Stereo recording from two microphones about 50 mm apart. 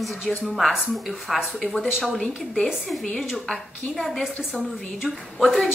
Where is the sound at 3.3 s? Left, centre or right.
Centre.